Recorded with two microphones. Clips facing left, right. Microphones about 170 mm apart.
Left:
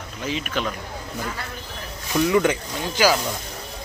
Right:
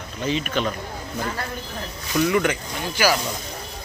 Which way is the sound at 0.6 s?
5° left (ahead or behind).